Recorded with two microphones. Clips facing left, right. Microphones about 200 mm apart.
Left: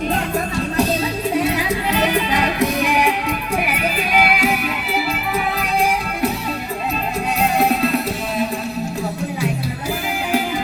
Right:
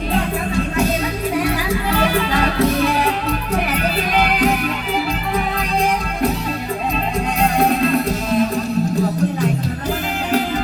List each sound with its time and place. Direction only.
1.5 s music: 20° left (ahead or behind)
7.6 s music: 5° left (ahead or behind)